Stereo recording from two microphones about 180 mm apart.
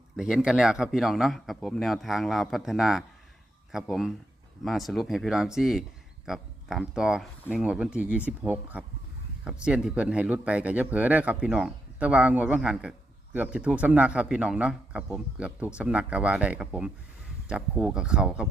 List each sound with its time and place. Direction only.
0.2 s speech: 5° right (ahead or behind)